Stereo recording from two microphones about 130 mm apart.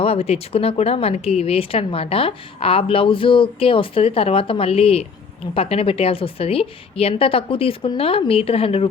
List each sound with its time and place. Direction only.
0.0 s speech: 50° left (ahead or behind)